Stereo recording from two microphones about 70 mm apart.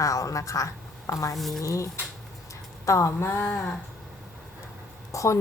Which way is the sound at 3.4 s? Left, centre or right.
Centre.